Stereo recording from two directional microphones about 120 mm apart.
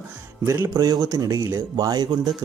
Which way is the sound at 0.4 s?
25° right (ahead or behind).